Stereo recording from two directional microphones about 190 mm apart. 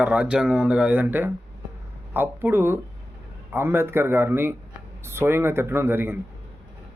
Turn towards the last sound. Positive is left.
turn(degrees=-10)  # may be behind; listen again after turning